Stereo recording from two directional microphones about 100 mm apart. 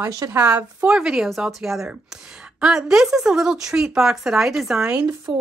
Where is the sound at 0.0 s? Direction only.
30° right (ahead or behind).